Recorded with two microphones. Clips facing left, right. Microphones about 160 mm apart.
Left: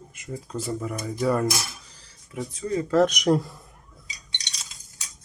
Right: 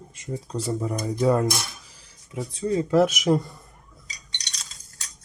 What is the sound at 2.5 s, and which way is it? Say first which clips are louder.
Speech: right 3 dB; 25° right (ahead or behind).